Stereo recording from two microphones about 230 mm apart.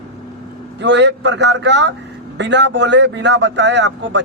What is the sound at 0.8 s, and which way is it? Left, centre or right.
A man's voice, right.